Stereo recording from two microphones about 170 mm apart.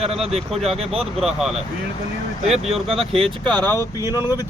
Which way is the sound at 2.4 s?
40° right (ahead or behind).